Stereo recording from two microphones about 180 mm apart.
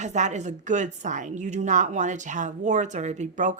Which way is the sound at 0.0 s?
40° right (ahead or behind).